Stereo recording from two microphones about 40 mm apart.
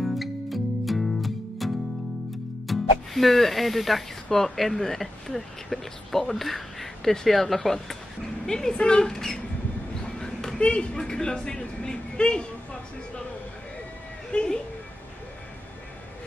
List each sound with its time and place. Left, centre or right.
0.2 s music: centre
2.6 s speech: centre
10.0 s basketball bounce: centre
10.6 s speech: left
11.0 s speech: centre
14.3 s speech: left